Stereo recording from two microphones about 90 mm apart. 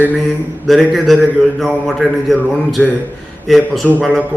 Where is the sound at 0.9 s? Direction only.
Centre (ahead or behind).